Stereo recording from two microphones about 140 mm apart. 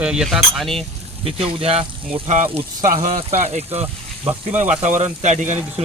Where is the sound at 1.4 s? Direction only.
45° right (ahead or behind).